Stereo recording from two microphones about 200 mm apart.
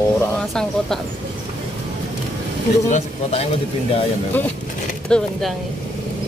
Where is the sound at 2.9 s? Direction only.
35° left (ahead or behind).